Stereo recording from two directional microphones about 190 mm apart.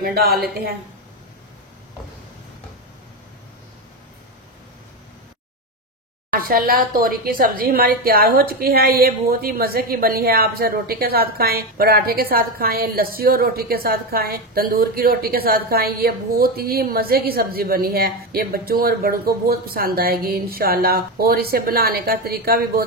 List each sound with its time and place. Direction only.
0.0 s a woman's voice: 55° right (ahead or behind)
6.3 s a woman's voice: 50° right (ahead or behind)